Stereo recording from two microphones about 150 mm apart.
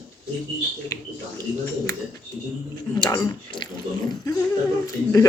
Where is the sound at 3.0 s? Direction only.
25° left (ahead or behind).